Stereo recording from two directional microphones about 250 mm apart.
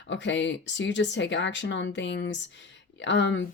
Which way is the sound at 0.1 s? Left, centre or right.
Left.